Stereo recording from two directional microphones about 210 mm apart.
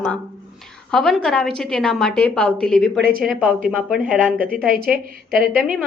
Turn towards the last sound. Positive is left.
turn(degrees=-5)  # may be behind; listen again after turning